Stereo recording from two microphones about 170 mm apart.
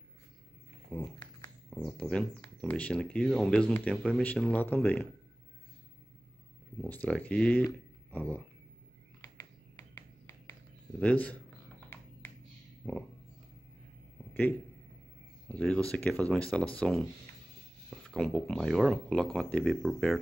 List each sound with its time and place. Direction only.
0.8 s speech: 10° left (ahead or behind)
6.9 s speech: 10° left (ahead or behind)
9.2 s finger snapping: 20° left (ahead or behind)
11.0 s speech: 10° left (ahead or behind)
12.8 s speech: centre (ahead or behind)
15.4 s speech: 5° left (ahead or behind)